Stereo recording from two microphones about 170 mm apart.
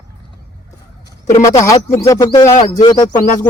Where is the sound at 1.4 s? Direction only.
20° left (ahead or behind).